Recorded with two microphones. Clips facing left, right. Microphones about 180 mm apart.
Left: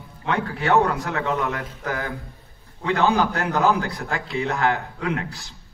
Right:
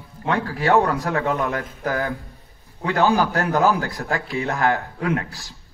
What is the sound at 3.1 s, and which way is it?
Speech, 20° left (ahead or behind).